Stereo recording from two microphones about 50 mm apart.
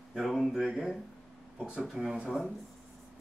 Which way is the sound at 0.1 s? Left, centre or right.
Centre.